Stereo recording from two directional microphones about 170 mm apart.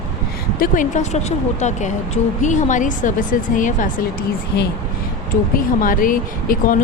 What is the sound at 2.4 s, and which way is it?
A woman's voice, 45° left (ahead or behind).